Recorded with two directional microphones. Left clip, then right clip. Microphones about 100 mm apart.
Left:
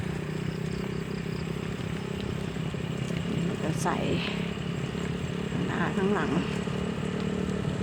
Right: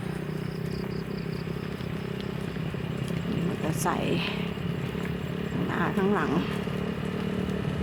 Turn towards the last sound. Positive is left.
turn(degrees=-30)  # may be behind; listen again after turning